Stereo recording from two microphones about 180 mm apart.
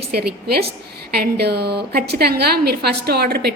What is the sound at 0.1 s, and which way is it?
A woman's voice, 60° right (ahead or behind).